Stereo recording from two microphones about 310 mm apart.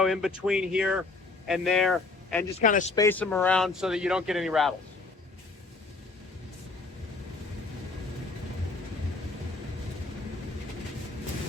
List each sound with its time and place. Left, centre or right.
0.0 s speech: centre
2.6 s speech: left
2.9 s speech: centre